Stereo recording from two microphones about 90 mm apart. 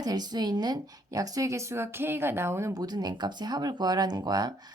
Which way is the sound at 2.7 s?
45° right (ahead or behind).